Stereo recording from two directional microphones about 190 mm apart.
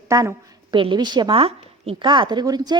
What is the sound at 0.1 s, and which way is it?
A woman's voice, 15° right (ahead or behind).